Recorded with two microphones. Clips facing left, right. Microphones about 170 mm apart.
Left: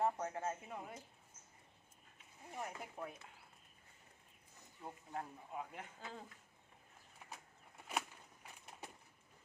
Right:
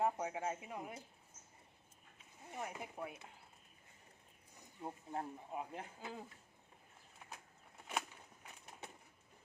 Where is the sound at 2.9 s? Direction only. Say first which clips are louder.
Right 1 dB; 10° right (ahead or behind).